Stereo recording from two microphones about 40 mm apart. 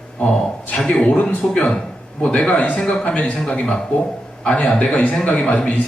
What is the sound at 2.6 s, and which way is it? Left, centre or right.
Speech, left.